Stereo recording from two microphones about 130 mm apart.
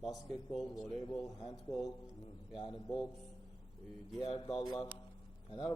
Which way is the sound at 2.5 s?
40° left (ahead or behind).